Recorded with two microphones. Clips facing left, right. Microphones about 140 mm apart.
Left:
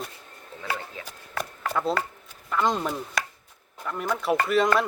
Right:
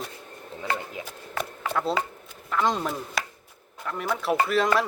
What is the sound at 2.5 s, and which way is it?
Speech, centre (ahead or behind).